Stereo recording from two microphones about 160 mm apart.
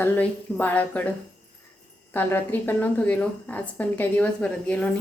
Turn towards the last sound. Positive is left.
turn(degrees=5)  # may be behind; listen again after turning